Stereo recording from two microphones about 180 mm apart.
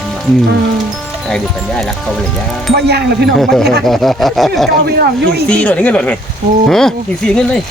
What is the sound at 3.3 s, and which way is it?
Speech, centre (ahead or behind).